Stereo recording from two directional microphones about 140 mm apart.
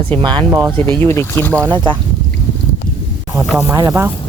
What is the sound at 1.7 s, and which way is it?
Speech, 30° right (ahead or behind).